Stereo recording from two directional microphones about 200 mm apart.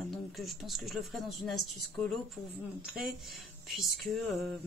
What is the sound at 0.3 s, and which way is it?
Speech, centre (ahead or behind).